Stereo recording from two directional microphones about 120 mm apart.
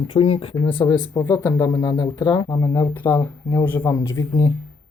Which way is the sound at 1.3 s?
30° left (ahead or behind).